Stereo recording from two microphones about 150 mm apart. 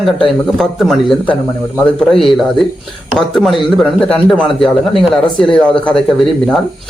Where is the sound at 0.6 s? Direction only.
Centre (ahead or behind).